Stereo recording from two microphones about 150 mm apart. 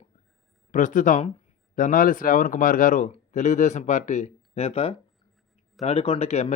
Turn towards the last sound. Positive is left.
turn(degrees=45)  # may be behind; listen again after turning